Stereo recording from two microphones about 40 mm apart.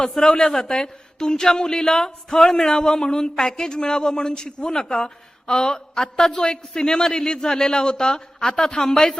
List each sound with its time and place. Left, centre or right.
0.2 s a woman's voice: centre